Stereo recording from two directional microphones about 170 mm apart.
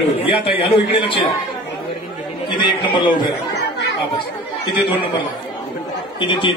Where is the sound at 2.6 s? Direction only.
25° left (ahead or behind).